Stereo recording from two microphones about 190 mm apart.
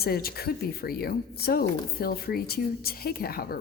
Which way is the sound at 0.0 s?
55° left (ahead or behind).